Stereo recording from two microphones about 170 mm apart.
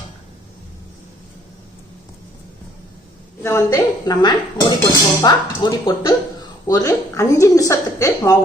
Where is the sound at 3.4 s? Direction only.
15° left (ahead or behind).